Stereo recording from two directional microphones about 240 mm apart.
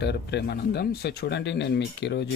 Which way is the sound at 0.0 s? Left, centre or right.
Left.